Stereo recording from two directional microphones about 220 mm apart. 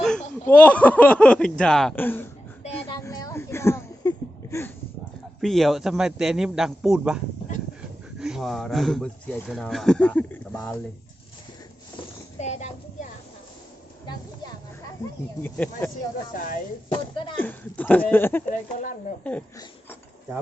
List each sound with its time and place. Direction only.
0.0 s speech: 5° left (ahead or behind)
3.0 s a sound: 15° left (ahead or behind)
5.4 s speech: centre (ahead or behind)
8.2 s speech: centre (ahead or behind)
12.4 s speech: 30° left (ahead or behind)
15.4 s speech: 5° left (ahead or behind)
16.3 s speech: 35° left (ahead or behind)
16.9 s speech: 20° left (ahead or behind)
17.4 s speech: 10° left (ahead or behind)
18.8 s speech: 35° left (ahead or behind)
19.2 s speech: 10° left (ahead or behind)